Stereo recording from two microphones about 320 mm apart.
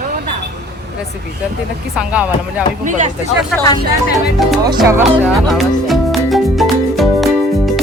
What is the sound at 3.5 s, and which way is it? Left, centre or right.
Speech, centre.